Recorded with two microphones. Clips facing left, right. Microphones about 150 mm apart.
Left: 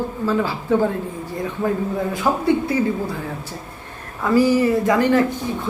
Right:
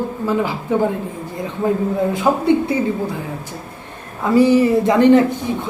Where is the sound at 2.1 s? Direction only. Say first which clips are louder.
Right 2 dB; 20° right (ahead or behind).